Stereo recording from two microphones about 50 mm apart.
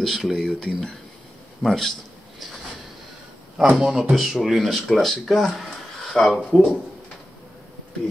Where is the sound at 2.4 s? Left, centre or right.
Centre.